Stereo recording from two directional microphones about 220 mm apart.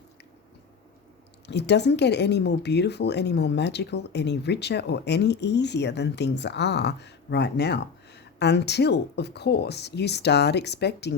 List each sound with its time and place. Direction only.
1.5 s speech: 50° left (ahead or behind)